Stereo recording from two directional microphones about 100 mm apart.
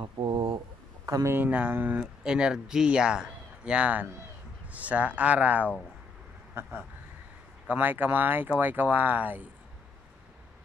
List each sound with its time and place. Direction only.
0.0 s a sound: 55° right (ahead or behind)
1.0 s speech: 30° right (ahead or behind); by 5.7 s 15° right (ahead or behind)
7.6 s speech: 15° right (ahead or behind)